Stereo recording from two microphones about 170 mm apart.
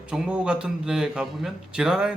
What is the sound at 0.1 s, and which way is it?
A man's voice, 5° right (ahead or behind).